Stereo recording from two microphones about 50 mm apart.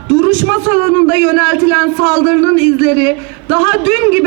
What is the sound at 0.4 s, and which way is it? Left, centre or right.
A man's voice, right.